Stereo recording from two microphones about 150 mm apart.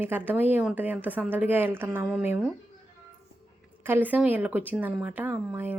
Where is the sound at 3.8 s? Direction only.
15° right (ahead or behind).